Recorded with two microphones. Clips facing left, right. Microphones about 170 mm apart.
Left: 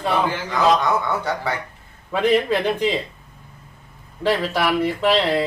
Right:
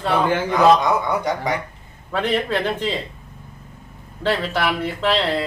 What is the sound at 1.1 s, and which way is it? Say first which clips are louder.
Speech: right 2 dB; 15° right (ahead or behind).